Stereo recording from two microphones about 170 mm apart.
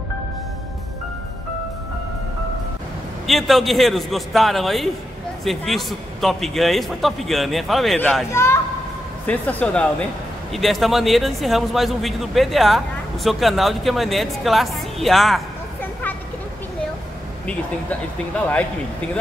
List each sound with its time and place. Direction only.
3.3 s speech: centre (ahead or behind)
8.3 s speech: 15° left (ahead or behind)
15.8 s a sound: 10° left (ahead or behind)